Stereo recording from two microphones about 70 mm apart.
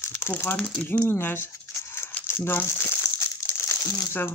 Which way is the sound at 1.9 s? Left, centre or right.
Left.